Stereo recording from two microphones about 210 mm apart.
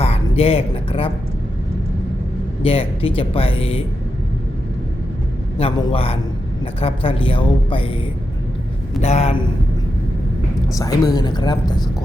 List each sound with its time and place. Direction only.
0.0 s a sound: 30° left (ahead or behind)
2.6 s speech: 25° left (ahead or behind)
5.5 s speech: 25° left (ahead or behind)
9.0 s speech: 30° left (ahead or behind)
10.7 s speech: 15° left (ahead or behind)